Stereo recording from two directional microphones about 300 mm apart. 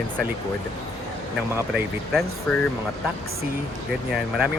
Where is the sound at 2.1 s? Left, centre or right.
Centre.